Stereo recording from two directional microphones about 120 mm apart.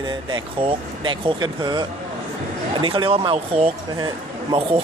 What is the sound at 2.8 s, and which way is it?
Speech, 50° right (ahead or behind).